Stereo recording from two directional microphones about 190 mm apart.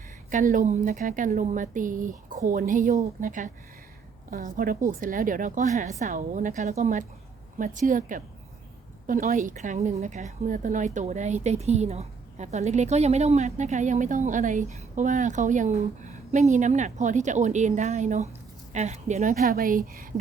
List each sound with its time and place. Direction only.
0.3 s a woman's voice: 45° right (ahead or behind)